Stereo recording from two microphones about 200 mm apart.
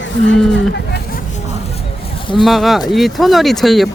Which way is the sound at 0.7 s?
55° left (ahead or behind).